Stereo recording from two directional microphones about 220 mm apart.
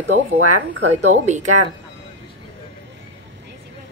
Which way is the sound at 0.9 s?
30° right (ahead or behind).